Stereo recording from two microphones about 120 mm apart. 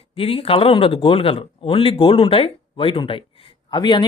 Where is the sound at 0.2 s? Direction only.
50° left (ahead or behind).